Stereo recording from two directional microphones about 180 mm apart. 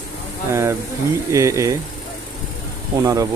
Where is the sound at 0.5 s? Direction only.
15° right (ahead or behind).